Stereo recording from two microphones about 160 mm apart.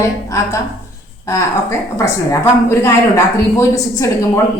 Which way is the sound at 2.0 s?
20° left (ahead or behind).